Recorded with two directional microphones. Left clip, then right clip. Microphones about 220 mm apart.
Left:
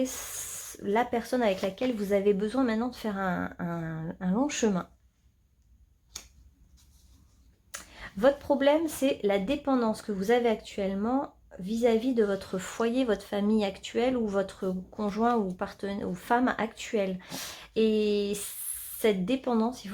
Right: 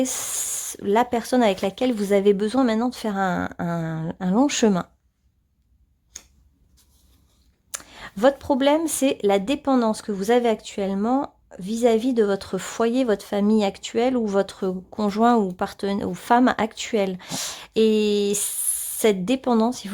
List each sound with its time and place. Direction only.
0.0 s speech: 40° right (ahead or behind)
7.7 s speech: 40° right (ahead or behind)